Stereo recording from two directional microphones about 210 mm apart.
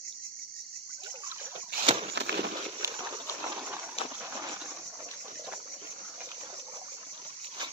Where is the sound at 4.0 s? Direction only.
25° left (ahead or behind).